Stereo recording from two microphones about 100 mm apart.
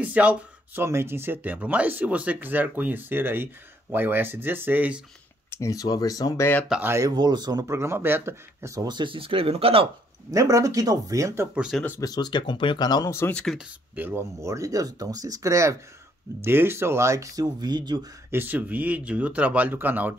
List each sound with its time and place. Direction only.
0.0 s speech: 15° right (ahead or behind)
0.8 s speech: 25° right (ahead or behind)
5.5 s speech: 30° left (ahead or behind)
6.8 s speech: 25° right (ahead or behind)
7.1 s speech: 45° right (ahead or behind)
7.6 s speech: 25° right (ahead or behind)
8.8 s speech: 50° right (ahead or behind); by 9.8 s 70° right (ahead or behind)
10.3 s speech: 35° right (ahead or behind)
12.0 s speech: 40° left (ahead or behind)
13.3 s speech: 10° left (ahead or behind)
13.9 s speech: 20° right (ahead or behind)
14.4 s speech: 30° right (ahead or behind)
18.3 s speech: 20° right (ahead or behind)